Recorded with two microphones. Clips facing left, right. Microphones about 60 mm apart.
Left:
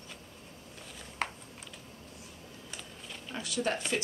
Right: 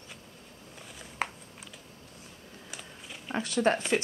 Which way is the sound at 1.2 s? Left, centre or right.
Centre.